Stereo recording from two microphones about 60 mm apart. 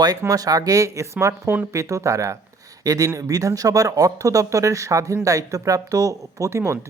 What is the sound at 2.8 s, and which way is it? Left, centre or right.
Speech, right.